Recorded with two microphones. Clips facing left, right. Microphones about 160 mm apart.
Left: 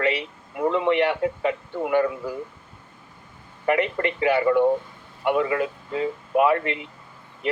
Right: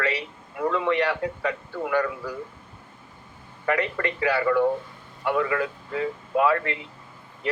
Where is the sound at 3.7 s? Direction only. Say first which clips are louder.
Left 3 dB; 20° left (ahead or behind).